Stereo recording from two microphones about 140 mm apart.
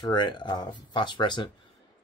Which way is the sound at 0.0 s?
35° left (ahead or behind).